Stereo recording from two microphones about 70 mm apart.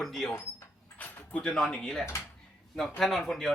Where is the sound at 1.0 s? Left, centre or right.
Left.